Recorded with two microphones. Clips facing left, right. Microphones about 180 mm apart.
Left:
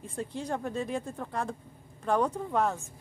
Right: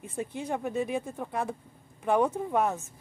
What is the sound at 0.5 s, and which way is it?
Speech, 10° right (ahead or behind).